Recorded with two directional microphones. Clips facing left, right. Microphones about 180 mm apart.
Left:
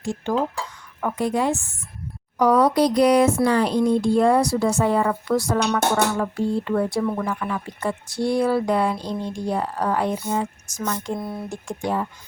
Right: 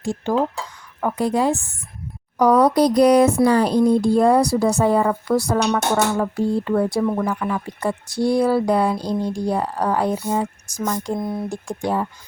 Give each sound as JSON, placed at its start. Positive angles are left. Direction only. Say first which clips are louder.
{"t": 1.0, "sound": "speech", "louder": "right 3 dB", "side_deg": -35}
{"t": 11.2, "sound": "speech", "louder": "right 5 dB", "side_deg": -20}
{"t": 11.8, "sound": "speech", "louder": "right 2 dB", "side_deg": -35}